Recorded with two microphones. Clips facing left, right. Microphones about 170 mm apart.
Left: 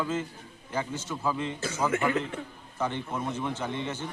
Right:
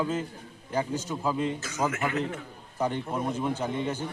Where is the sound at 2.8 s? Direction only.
10° right (ahead or behind).